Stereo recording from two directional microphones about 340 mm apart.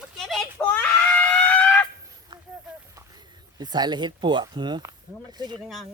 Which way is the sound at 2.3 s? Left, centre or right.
Centre.